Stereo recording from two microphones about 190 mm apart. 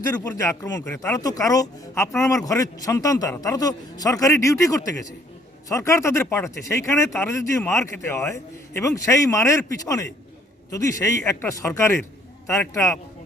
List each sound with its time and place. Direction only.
0.3 s speech: 15° left (ahead or behind)